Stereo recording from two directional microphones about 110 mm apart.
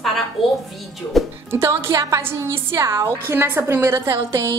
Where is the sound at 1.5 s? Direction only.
20° right (ahead or behind).